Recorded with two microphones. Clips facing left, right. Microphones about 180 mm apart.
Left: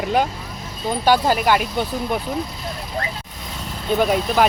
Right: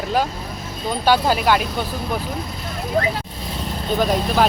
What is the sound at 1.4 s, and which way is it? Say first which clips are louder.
Speech: even; 10° left (ahead or behind).